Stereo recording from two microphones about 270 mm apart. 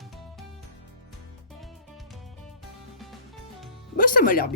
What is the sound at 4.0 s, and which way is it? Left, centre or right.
Speech, left.